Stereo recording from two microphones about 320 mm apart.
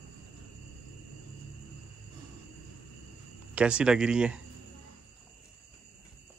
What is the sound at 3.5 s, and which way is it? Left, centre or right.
Speech, centre.